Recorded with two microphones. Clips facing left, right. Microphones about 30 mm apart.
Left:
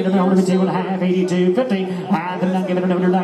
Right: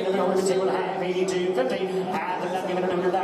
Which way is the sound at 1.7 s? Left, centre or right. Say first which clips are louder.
Left 5 dB; left.